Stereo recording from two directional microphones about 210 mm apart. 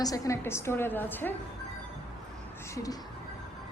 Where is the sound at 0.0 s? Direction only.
15° left (ahead or behind).